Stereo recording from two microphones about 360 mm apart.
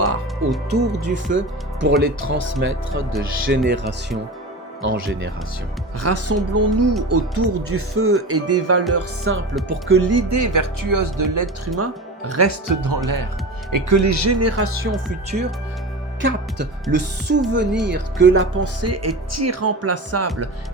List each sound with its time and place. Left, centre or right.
0.0 s music: right
0.7 s speech: right
4.8 s speech: right
11.8 s speech: right
12.8 s speech: right
13.7 s speech: right
16.9 s a woman's voice: right